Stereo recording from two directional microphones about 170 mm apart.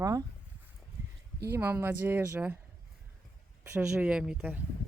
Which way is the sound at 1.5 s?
15° right (ahead or behind).